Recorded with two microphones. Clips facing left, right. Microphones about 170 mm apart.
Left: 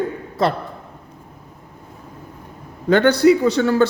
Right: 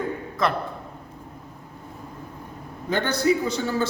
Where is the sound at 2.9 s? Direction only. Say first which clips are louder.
Left 9 dB; 70° left (ahead or behind).